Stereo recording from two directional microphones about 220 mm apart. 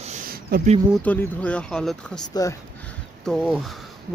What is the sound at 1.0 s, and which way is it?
Speech, 5° left (ahead or behind).